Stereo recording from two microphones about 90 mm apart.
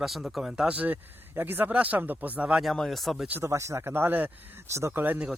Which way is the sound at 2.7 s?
5° left (ahead or behind).